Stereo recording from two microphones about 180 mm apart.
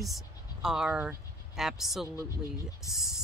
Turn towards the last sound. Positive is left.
turn(degrees=0)  # may be behind; listen again after turning